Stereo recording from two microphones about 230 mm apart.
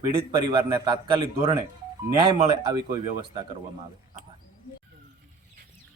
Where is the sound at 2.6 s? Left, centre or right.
Centre.